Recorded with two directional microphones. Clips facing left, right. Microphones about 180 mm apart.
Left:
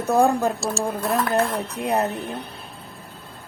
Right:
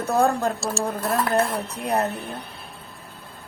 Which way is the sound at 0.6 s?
Centre (ahead or behind).